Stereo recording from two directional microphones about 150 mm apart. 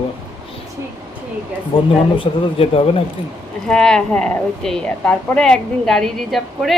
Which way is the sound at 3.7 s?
5° left (ahead or behind).